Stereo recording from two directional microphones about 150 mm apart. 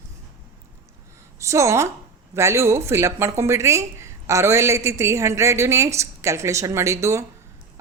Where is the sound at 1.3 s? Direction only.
20° right (ahead or behind).